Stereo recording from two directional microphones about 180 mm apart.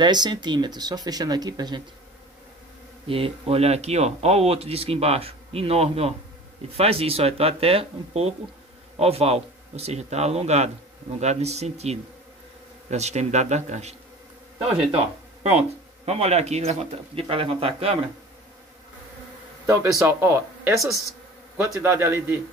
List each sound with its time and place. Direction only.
0.0 s speech: 25° right (ahead or behind)
3.1 s speech: 30° right (ahead or behind)
19.6 s a man's voice: 15° right (ahead or behind)
21.8 s speech: 15° right (ahead or behind)